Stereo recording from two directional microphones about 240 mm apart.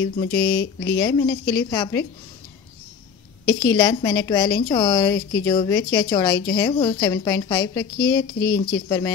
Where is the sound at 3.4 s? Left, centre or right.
Centre.